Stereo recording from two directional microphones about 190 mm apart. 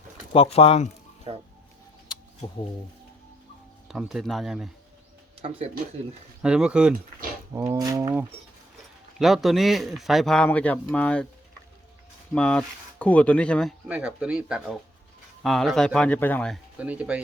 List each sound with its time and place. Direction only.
0.3 s speech: 30° left (ahead or behind)
1.3 s music: 30° right (ahead or behind)
3.8 s speech: centre (ahead or behind)
5.4 s speech: 30° right (ahead or behind)
6.4 s speech: 5° right (ahead or behind)
9.1 s speech: centre (ahead or behind)
12.3 s speech: 5° left (ahead or behind)
16.7 s speech: 5° right (ahead or behind)